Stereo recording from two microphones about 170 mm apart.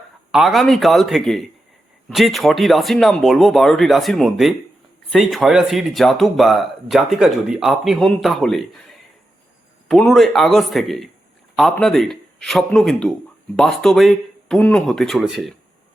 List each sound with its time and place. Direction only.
0.3 s speech: centre (ahead or behind)
9.9 s speech: centre (ahead or behind)